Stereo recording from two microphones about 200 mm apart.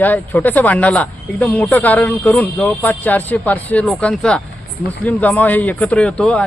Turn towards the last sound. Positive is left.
turn(degrees=5)  # may be behind; listen again after turning